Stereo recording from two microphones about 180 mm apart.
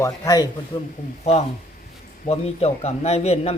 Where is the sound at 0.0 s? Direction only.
20° left (ahead or behind).